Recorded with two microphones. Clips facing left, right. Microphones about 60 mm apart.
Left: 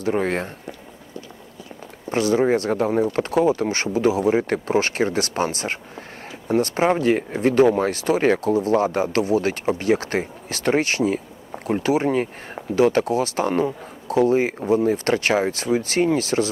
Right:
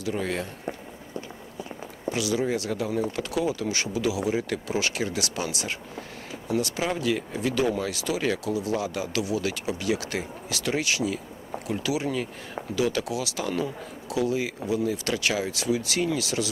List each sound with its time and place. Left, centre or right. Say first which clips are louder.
0.0 s speech: left 7 dB; left
2.0 s speech: left 8 dB; left